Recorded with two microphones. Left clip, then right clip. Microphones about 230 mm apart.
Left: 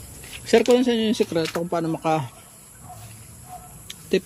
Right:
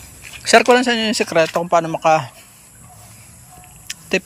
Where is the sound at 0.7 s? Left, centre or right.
Centre.